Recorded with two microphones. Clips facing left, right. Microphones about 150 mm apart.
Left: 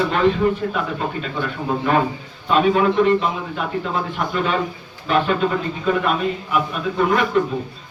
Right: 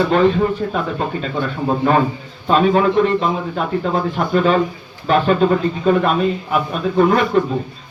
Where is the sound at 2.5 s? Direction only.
35° right (ahead or behind).